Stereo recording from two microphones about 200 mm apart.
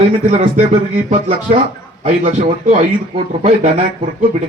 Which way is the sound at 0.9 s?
30° right (ahead or behind).